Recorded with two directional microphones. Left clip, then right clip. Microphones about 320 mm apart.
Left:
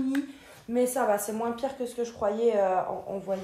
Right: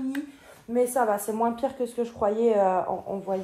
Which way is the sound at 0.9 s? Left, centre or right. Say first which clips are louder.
Right 2 dB; centre.